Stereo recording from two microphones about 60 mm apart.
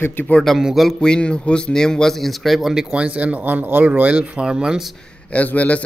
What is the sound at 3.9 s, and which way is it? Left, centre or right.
Speech, centre.